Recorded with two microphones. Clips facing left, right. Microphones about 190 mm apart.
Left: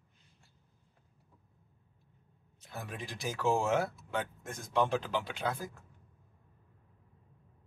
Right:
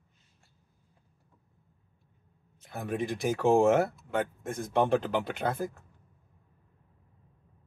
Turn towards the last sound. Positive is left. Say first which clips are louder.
# right 5 dB
turn(degrees=-55)  # may be behind; listen again after turning